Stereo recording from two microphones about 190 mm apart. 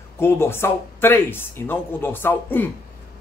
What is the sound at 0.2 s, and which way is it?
A man's voice, 15° left (ahead or behind).